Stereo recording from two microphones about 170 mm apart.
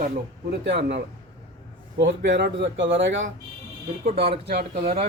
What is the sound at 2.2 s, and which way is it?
Speech, 70° right (ahead or behind).